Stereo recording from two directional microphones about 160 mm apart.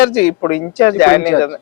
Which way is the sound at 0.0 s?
10° left (ahead or behind).